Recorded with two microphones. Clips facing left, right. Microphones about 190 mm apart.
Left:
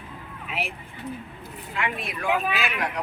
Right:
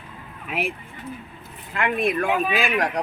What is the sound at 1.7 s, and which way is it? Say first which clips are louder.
Speech: right 8 dB; 55° right (ahead or behind).